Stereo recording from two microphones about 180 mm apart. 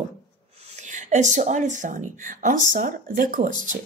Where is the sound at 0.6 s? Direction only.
40° right (ahead or behind).